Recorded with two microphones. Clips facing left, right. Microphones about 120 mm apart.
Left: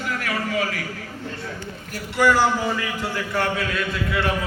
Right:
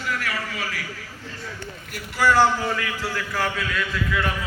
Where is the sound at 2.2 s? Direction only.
15° left (ahead or behind).